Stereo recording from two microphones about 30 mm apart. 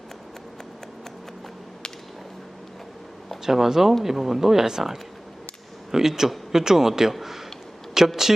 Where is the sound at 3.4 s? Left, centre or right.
Centre.